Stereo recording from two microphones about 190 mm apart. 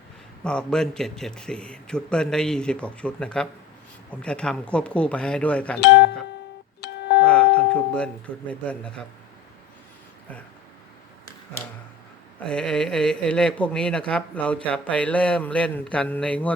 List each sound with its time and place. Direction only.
0.4 s a man's voice: 5° left (ahead or behind)
6.8 s music: 65° left (ahead or behind)
7.3 s speech: 5° left (ahead or behind)
12.5 s a man's voice: 5° left (ahead or behind)